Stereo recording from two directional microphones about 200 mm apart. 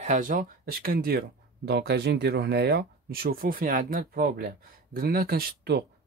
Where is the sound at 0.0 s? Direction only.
40° right (ahead or behind).